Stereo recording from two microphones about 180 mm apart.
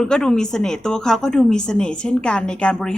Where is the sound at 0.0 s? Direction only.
5° left (ahead or behind).